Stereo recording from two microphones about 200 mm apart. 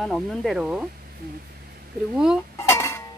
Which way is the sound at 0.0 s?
Centre (ahead or behind).